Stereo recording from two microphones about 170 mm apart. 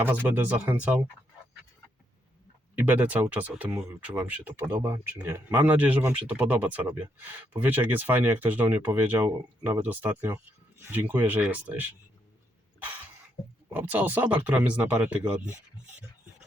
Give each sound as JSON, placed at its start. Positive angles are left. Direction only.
{"t": 0.0, "sound": "speech", "side_deg": -10}
{"t": 2.7, "sound": "speech", "side_deg": -10}
{"t": 13.7, "sound": "speech", "side_deg": -10}